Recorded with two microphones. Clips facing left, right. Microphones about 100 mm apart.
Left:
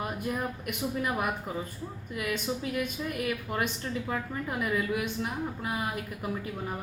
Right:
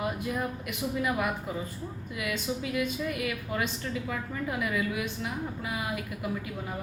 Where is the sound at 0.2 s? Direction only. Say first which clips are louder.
Even; 45° left (ahead or behind).